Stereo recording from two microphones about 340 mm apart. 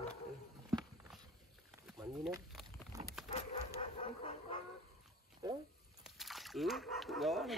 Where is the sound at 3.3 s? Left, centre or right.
Centre.